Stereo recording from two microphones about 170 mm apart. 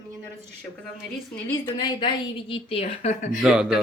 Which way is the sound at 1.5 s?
25° left (ahead or behind).